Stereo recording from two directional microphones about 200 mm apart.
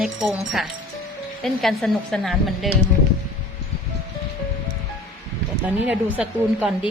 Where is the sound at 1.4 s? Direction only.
Centre (ahead or behind).